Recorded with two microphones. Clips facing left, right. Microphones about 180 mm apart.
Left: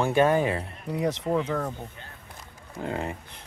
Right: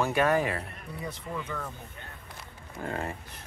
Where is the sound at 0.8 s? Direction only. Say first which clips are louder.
Left 11 dB; 85° left.